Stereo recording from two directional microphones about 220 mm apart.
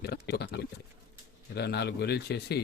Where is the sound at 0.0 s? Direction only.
45° left (ahead or behind).